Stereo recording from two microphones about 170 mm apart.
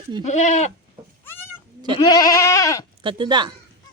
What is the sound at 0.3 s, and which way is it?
Goat, 45° left (ahead or behind).